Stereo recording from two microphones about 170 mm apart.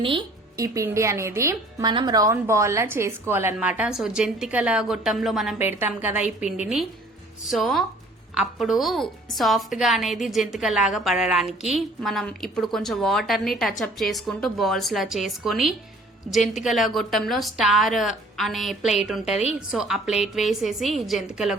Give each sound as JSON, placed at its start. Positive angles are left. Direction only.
{"t": 0.0, "sound": "speech", "side_deg": -30}
{"t": 0.6, "sound": "speech", "side_deg": -20}
{"t": 5.5, "sound": "speech", "side_deg": -10}
{"t": 7.5, "sound": "a woman's voice", "side_deg": 0}